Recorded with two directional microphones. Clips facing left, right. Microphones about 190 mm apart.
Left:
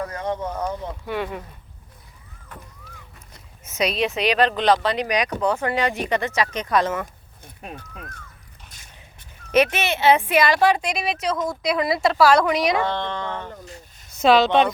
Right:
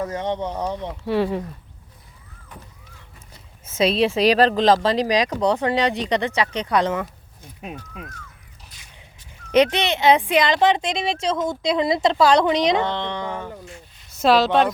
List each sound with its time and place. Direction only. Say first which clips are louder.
0.0 s speech: right 2 dB; 20° right (ahead or behind)
3.7 s speech: right 4 dB; 30° right (ahead or behind)
9.5 s speech: right 2 dB; 15° right (ahead or behind)